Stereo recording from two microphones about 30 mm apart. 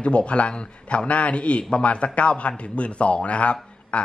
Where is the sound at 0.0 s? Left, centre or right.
Left.